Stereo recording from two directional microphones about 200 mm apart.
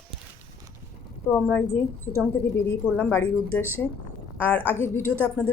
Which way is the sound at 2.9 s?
5° left (ahead or behind).